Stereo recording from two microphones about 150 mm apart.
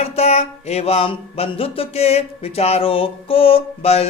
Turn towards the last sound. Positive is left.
turn(degrees=45)  # may be behind; listen again after turning